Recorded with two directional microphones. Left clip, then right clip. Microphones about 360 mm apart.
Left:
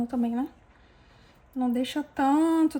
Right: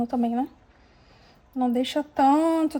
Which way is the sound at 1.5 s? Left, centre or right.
Centre.